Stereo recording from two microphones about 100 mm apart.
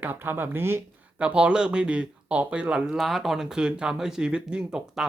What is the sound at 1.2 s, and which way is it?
Speech, 10° right (ahead or behind).